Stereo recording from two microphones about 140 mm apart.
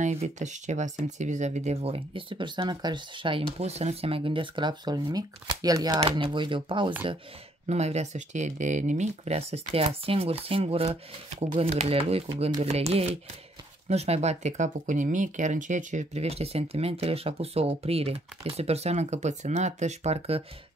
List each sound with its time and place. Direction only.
0.0 s speech: 55° right (ahead or behind); by 5.9 s 25° right (ahead or behind)
5.9 s speech: 40° right (ahead or behind)
7.6 s speech: 50° right (ahead or behind)